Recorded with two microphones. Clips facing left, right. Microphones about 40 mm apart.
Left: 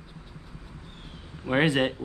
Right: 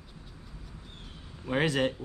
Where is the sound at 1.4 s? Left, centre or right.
Left.